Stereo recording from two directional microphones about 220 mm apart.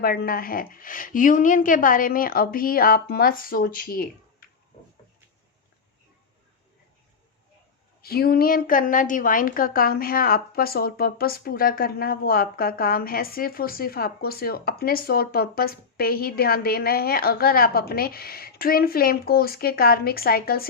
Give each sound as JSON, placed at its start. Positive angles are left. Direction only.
{"t": 0.0, "sound": "a woman's voice", "side_deg": 40}
{"t": 8.0, "sound": "a woman's voice", "side_deg": 45}